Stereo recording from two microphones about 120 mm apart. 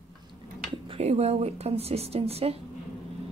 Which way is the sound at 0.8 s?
60° right (ahead or behind).